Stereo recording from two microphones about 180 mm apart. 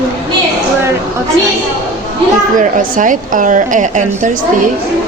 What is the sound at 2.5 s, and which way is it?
A woman's voice, 45° right (ahead or behind).